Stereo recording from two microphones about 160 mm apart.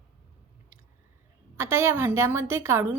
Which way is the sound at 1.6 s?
15° right (ahead or behind).